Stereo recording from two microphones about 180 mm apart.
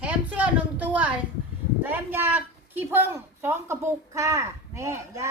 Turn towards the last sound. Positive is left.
turn(degrees=-15)  # may be behind; listen again after turning